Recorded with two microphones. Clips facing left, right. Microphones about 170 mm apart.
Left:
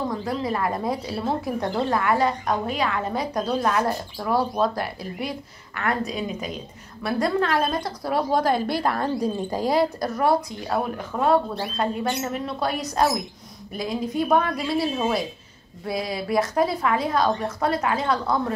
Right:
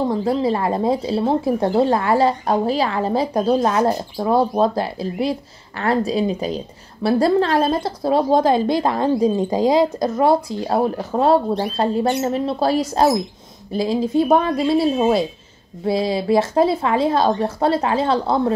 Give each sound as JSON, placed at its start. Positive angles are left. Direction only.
{"t": 0.0, "sound": "speech", "side_deg": -30}